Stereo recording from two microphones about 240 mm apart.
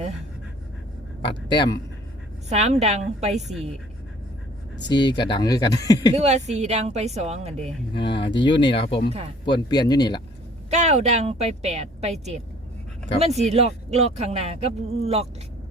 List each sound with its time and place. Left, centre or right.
1.2 s a man's voice: centre
2.5 s speech: right
4.9 s speech: centre
6.1 s speech: right
7.9 s speech: left
10.7 s speech: right
13.4 s speech: right